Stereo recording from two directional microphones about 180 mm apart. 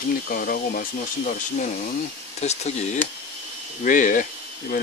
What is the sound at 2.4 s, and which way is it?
Speech, 35° left (ahead or behind).